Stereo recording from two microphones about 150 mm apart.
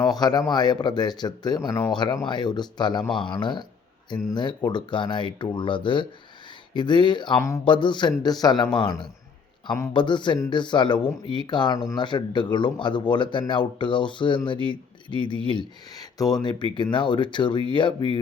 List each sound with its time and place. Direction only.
0.0 s a man's voice: 25° left (ahead or behind)
7.3 s speech: 20° left (ahead or behind)
7.6 s speech: 30° left (ahead or behind)